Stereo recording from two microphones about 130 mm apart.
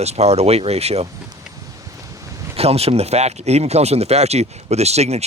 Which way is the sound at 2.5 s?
50° right (ahead or behind).